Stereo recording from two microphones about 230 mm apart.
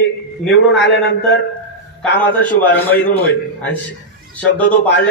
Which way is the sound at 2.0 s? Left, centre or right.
Centre.